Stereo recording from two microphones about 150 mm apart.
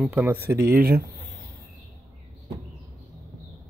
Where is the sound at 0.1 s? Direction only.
10° right (ahead or behind).